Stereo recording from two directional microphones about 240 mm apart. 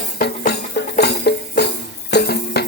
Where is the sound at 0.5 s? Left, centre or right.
Left.